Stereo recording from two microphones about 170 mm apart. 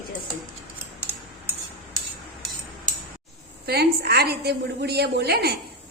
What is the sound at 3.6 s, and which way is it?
A woman's voice, 70° right (ahead or behind).